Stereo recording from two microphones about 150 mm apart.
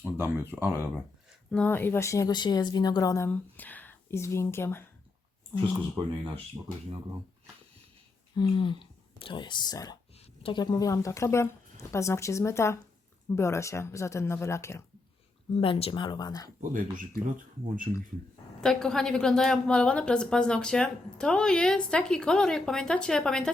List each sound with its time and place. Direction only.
0.0 s speech: 15° right (ahead or behind)
1.5 s speech: 10° left (ahead or behind)
8.4 s speech: 30° left (ahead or behind)
15.6 s speech: 35° left (ahead or behind)
16.6 s speech: 65° right (ahead or behind)
18.6 s a woman's voice: 5° left (ahead or behind)